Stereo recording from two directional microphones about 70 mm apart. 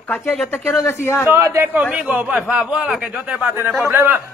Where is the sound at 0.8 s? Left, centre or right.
Left.